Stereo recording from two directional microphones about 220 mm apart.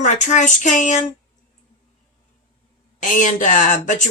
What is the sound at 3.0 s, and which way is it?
Speech, 35° left (ahead or behind).